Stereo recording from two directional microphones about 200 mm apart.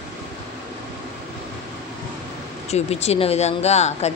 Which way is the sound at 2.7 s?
30° left (ahead or behind).